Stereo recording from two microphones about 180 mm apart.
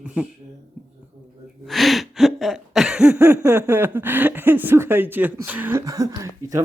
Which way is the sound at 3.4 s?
15° right (ahead or behind).